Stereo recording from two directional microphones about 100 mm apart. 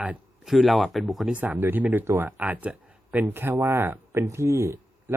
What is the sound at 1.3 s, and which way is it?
Speech, 15° right (ahead or behind).